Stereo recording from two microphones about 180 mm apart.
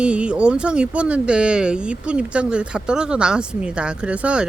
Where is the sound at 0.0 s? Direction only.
5° right (ahead or behind).